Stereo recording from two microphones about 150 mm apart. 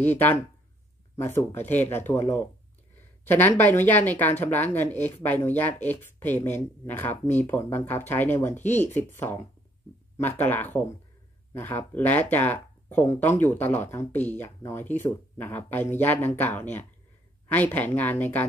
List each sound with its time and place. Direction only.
0.0 s speech: 10° left (ahead or behind)